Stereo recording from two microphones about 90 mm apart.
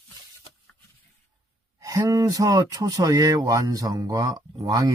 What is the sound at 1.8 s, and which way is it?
Speech, 35° right (ahead or behind).